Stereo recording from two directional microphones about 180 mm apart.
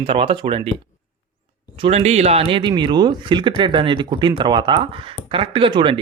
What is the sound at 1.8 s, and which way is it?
Speech, 35° right (ahead or behind).